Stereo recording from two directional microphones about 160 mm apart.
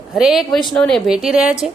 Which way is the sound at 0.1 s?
Centre (ahead or behind).